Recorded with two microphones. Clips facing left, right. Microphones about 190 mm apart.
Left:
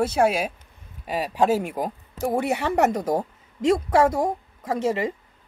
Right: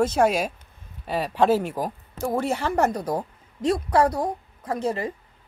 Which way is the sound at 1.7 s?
20° left (ahead or behind).